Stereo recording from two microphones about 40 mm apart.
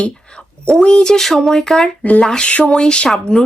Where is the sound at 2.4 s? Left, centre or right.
Left.